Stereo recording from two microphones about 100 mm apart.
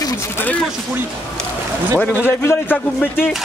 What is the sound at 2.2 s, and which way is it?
Speech, 25° left (ahead or behind).